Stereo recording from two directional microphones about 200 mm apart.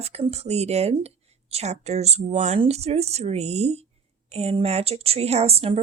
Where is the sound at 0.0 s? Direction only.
30° right (ahead or behind).